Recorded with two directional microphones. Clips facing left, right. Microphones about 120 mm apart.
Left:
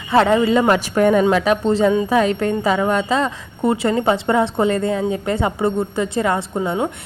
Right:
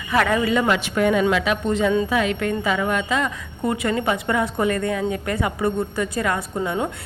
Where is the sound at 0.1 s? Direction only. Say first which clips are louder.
Left 5 dB; 25° left (ahead or behind).